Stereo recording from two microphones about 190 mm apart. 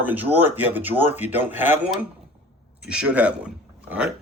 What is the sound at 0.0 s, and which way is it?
Speech, 10° right (ahead or behind).